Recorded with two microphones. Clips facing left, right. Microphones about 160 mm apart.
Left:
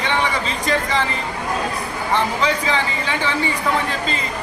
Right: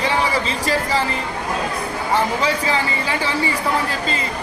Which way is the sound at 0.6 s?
35° right (ahead or behind).